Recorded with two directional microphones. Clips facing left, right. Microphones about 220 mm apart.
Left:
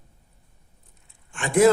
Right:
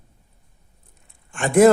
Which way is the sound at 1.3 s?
50° right (ahead or behind).